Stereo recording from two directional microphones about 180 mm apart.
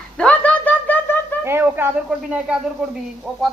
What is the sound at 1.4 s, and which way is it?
Speech, 10° right (ahead or behind).